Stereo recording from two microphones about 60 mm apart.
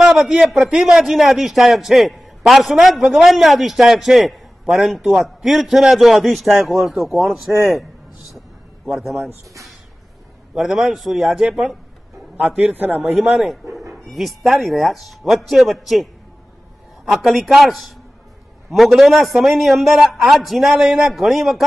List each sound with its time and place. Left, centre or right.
0.0 s a man's voice: centre
8.4 s a sound: centre
10.5 s a man's voice: centre
11.4 s a man's voice: centre; by 13.1 s right
13.3 s a man's voice: centre